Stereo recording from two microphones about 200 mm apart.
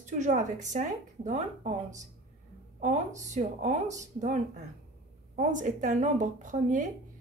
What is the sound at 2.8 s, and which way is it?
A woman's voice, 35° right (ahead or behind).